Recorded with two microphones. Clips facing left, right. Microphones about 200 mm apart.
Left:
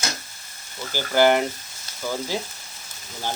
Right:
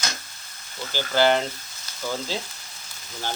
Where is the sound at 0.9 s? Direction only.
15° left (ahead or behind).